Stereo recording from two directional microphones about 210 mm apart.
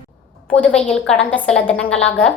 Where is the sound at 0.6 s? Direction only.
5° left (ahead or behind).